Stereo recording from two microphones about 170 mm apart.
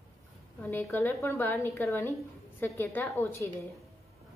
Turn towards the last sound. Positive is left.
turn(degrees=15)  # may be behind; listen again after turning